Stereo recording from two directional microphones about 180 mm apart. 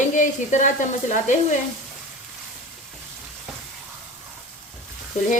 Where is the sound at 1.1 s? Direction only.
40° left (ahead or behind).